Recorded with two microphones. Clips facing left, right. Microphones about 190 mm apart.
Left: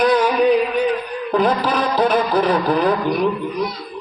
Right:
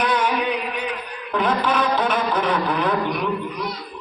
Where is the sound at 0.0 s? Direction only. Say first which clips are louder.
Left 6 dB; 35° left (ahead or behind).